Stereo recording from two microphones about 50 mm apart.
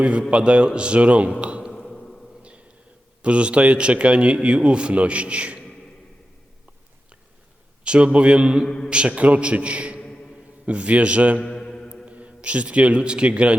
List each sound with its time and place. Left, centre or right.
0.0 s a man's voice: right
1.7 s a sound: centre
2.4 s a sound: right
3.2 s a man's voice: right
7.9 s a man's voice: right
11.4 s mantra: centre
12.0 s a man's voice: right